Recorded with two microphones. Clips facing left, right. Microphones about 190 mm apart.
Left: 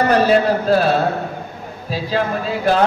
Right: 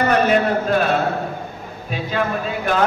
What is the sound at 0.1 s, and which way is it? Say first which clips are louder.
Speech: left 3 dB; 35° left (ahead or behind).